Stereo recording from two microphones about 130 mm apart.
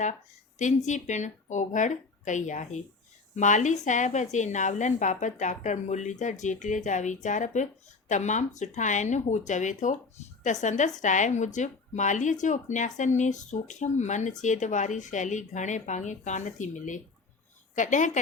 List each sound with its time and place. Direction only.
0.9 s a woman's voice: 70° left (ahead or behind)